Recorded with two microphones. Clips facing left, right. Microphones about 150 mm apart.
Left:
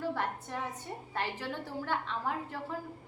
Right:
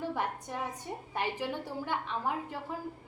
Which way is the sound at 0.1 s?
15° right (ahead or behind).